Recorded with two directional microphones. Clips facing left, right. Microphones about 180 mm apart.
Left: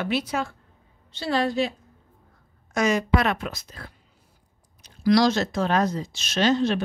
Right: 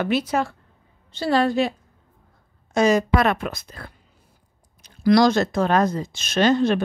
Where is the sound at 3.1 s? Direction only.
50° right (ahead or behind).